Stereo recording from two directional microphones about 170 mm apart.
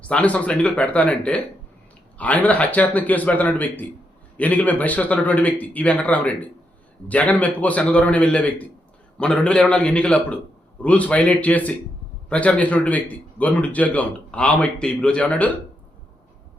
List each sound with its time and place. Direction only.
0.0 s a man's voice: 10° left (ahead or behind)